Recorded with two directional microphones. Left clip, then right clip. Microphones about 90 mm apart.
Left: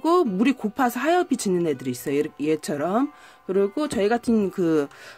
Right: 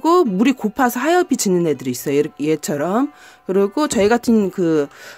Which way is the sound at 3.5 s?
35° right (ahead or behind).